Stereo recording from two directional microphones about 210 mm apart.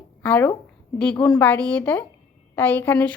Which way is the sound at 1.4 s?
10° left (ahead or behind).